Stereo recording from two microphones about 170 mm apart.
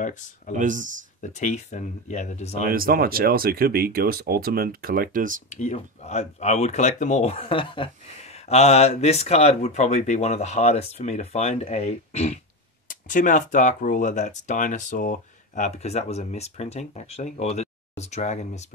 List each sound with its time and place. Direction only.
0.6 s speech: 50° right (ahead or behind)
1.3 s speech: 45° left (ahead or behind)
2.6 s speech: 60° right (ahead or behind)
5.6 s speech: 45° left (ahead or behind)